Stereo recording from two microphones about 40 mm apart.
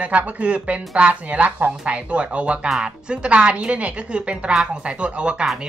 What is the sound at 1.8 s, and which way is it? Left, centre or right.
A woman's voice, right.